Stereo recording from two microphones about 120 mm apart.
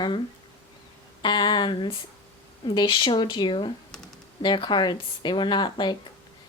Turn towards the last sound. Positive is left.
turn(degrees=40)  # may be behind; listen again after turning